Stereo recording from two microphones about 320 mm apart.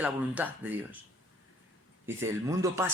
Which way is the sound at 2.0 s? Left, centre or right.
Centre.